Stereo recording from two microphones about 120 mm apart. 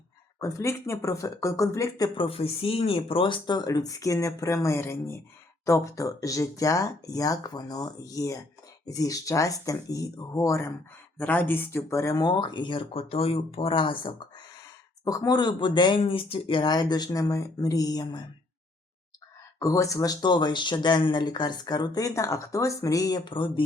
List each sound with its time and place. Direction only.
0.3 s speech: 25° left (ahead or behind)
2.1 s speech: 50° left (ahead or behind); by 10.8 s 25° left (ahead or behind)
11.2 s speech: 15° left (ahead or behind); by 14.4 s 45° left (ahead or behind)
15.0 s speech: 30° left (ahead or behind)
19.5 s speech: 25° left (ahead or behind); by 23.6 s 40° left (ahead or behind)